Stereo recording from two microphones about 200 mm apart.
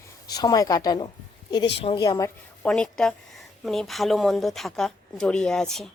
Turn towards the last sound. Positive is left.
turn(degrees=0)  # may be behind; listen again after turning